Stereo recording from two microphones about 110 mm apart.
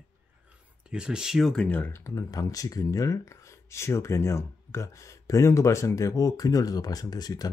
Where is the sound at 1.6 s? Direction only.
15° left (ahead or behind).